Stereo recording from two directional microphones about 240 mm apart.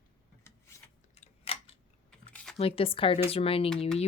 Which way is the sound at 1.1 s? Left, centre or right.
Left.